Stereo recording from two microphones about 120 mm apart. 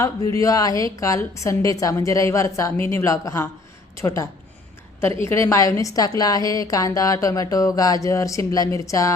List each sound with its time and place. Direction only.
0.3 s a woman's voice: 30° left (ahead or behind)